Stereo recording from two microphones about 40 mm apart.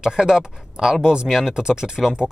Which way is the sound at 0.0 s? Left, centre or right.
Centre.